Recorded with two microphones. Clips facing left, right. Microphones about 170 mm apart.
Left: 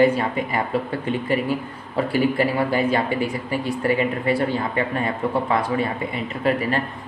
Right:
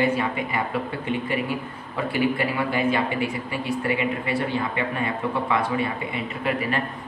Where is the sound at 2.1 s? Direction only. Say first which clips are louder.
Left 3 dB; 35° left (ahead or behind).